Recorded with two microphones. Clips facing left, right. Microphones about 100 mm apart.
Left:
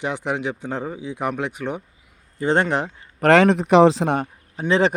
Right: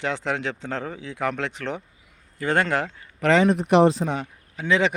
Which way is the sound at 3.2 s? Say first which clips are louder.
Left 4 dB; 75° left (ahead or behind).